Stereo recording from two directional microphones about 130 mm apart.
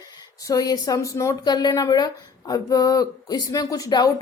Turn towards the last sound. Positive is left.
turn(degrees=30)  # may be behind; listen again after turning